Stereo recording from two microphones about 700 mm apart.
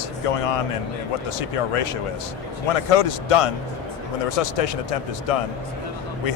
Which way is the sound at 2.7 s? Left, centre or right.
Left.